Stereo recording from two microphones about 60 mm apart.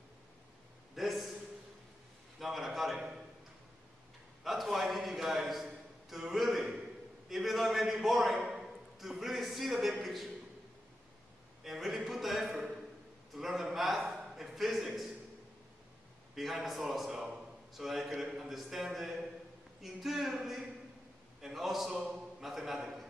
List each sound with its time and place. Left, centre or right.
0.9 s a sound: centre
2.3 s a man's voice: centre
4.4 s a man's voice: centre
11.6 s a man's voice: centre
16.3 s a man's voice: centre